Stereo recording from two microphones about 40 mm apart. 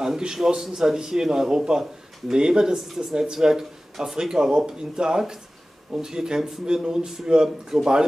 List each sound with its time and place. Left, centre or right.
0.0 s a man's voice: centre